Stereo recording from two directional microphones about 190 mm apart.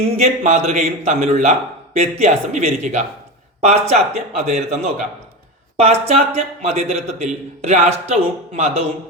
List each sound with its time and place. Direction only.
0.0 s speech: 35° right (ahead or behind)